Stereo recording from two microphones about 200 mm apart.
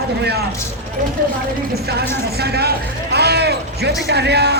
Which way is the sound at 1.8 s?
55° right (ahead or behind).